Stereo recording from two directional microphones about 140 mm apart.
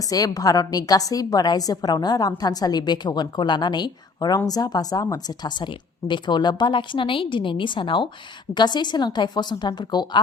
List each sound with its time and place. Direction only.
0.1 s a woman's voice: 25° left (ahead or behind)